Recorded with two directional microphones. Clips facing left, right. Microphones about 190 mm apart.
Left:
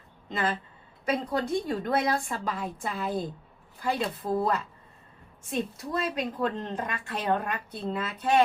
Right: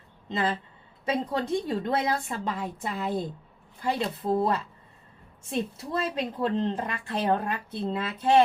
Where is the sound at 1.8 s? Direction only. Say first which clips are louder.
Even; 25° right (ahead or behind).